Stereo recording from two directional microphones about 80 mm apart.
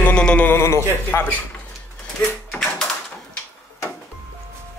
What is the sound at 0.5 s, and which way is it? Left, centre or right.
Speech, left.